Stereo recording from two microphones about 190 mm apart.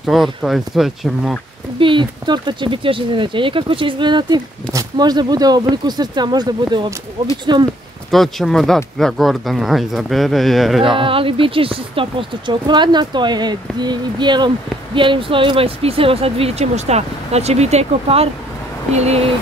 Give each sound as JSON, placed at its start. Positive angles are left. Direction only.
{"t": 0.0, "sound": "speech", "side_deg": 0}
{"t": 1.8, "sound": "speech", "side_deg": -25}
{"t": 8.1, "sound": "speech", "side_deg": 0}
{"t": 11.0, "sound": "speech", "side_deg": -30}